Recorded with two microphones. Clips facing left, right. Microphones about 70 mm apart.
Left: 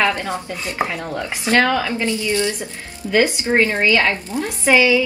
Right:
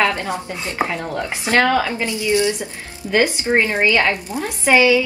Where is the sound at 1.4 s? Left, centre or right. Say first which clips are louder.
Even; right.